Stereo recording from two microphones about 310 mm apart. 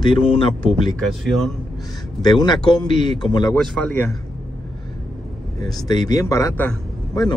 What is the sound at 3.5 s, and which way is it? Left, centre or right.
Speech, centre.